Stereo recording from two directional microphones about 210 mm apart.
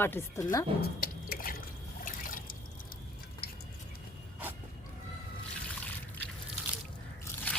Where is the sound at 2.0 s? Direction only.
40° left (ahead or behind).